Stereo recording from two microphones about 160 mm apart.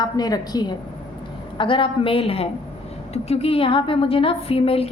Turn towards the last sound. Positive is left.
turn(degrees=35)  # may be behind; listen again after turning